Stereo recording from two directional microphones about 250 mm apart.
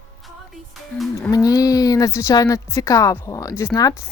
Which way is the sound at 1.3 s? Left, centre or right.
Centre.